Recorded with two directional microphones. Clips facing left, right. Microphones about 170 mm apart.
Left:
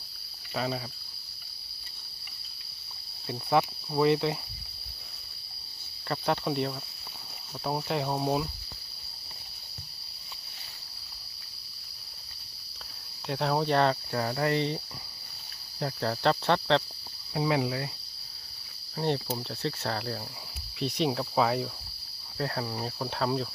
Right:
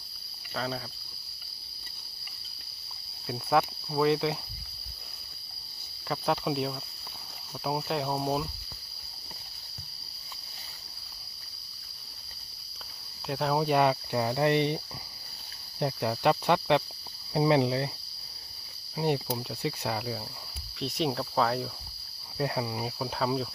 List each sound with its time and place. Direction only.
0.5 s speech: 10° left (ahead or behind)
3.2 s speech: centre (ahead or behind)
6.1 s speech: centre (ahead or behind)
13.2 s cricket: centre (ahead or behind); by 14.8 s 20° right (ahead or behind)
15.8 s cricket: 15° right (ahead or behind)
17.3 s speech: 30° right (ahead or behind)
18.9 s cricket: 10° right (ahead or behind)
20.7 s speech: centre (ahead or behind)
22.4 s speech: 15° right (ahead or behind)